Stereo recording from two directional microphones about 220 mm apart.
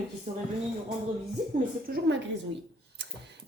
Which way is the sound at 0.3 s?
30° right (ahead or behind).